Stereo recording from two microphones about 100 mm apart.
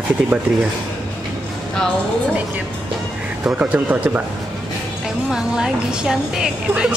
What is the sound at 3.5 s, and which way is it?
Speech, 15° right (ahead or behind).